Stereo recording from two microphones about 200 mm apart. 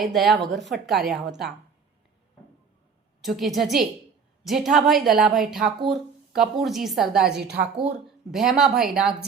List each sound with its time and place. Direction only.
0.0 s a woman's voice: centre (ahead or behind)
3.2 s a woman's voice: centre (ahead or behind)
7.4 s speech: 55° right (ahead or behind)
8.3 s a woman's voice: centre (ahead or behind)